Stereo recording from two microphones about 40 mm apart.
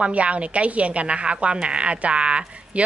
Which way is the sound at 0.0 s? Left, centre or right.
Right.